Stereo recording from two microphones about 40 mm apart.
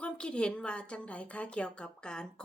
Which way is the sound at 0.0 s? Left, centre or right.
Left.